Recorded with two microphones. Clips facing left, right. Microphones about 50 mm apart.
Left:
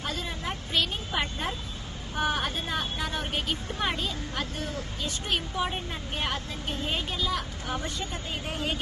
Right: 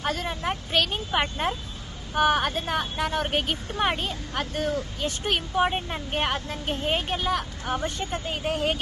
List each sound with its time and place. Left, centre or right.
0.0 s vehicle: right
2.1 s speech: right